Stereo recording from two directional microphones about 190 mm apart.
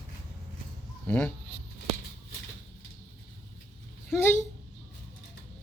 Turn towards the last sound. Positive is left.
turn(degrees=10)  # may be behind; listen again after turning